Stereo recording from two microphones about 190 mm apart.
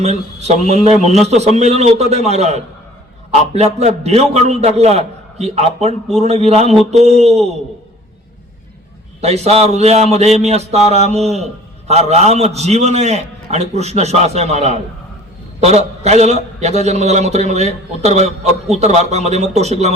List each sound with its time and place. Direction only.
0.0 s a man's voice: 35° right (ahead or behind)
9.2 s a man's voice: 35° right (ahead or behind)